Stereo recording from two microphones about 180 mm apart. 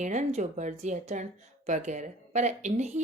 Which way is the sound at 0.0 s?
40° right (ahead or behind).